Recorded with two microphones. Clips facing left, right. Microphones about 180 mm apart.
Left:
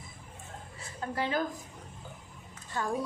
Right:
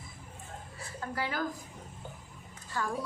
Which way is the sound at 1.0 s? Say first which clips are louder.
Left 3 dB; 20° left (ahead or behind).